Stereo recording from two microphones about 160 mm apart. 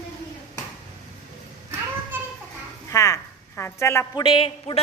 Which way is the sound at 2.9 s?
20° left (ahead or behind).